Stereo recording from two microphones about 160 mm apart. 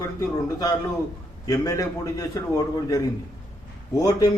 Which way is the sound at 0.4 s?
20° left (ahead or behind).